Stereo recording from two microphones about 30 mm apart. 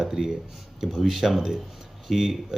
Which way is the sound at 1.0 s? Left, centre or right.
Centre.